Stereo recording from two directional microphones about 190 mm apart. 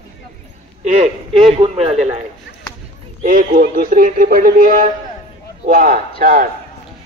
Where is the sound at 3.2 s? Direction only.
50° right (ahead or behind).